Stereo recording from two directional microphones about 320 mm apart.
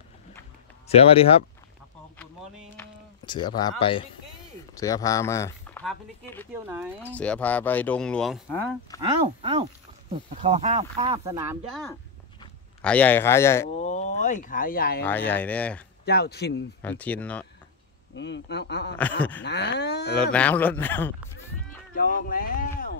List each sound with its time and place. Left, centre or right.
0.8 s speech: centre
2.1 s a sound: centre
4.7 s speech: centre
9.2 s speech: centre
11.7 s speech: centre
13.7 s speech: left
15.0 s speech: centre
16.1 s speech: left
16.8 s speech: centre
18.1 s speech: left
18.9 s speech: centre
19.4 s speech: left
20.3 s speech: centre
21.9 s speech: left